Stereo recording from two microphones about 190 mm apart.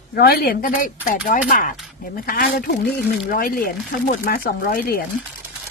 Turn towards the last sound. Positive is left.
turn(degrees=50)  # may be behind; listen again after turning